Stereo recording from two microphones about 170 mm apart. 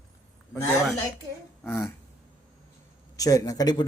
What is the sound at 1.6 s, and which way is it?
Speech, 15° left (ahead or behind).